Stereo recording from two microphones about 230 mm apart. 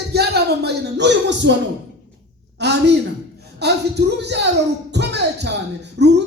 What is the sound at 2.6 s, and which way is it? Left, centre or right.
A woman's voice, right.